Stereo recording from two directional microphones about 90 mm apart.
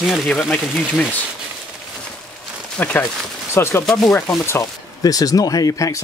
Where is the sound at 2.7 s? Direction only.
15° left (ahead or behind).